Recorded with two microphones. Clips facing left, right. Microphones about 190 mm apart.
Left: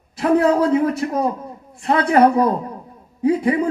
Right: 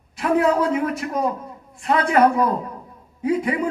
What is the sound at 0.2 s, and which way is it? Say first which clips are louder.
Speech: left 3 dB; 35° left (ahead or behind).